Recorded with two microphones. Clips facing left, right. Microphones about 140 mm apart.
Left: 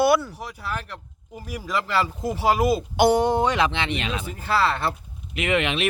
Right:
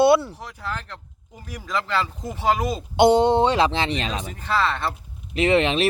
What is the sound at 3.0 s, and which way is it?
Speech, 25° right (ahead or behind).